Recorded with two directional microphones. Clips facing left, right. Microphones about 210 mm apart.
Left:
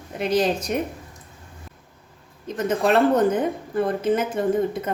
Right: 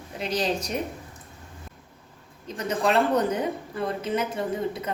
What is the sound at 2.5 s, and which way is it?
A woman's voice, 50° left (ahead or behind).